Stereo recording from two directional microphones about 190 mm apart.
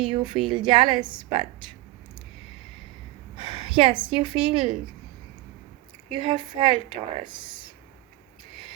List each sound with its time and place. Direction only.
0.0 s a woman's voice: 25° right (ahead or behind)
3.3 s a sound: 25° right (ahead or behind)
4.1 s a woman's voice: 25° right (ahead or behind)
6.1 s a woman's voice: 25° right (ahead or behind)